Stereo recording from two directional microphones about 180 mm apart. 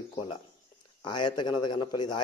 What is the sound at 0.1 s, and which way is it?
A man's voice, 25° left (ahead or behind).